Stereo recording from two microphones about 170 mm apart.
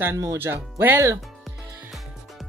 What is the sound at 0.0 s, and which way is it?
Speech, 15° right (ahead or behind).